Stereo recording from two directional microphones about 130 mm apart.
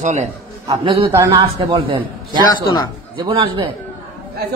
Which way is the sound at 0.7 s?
45° right (ahead or behind).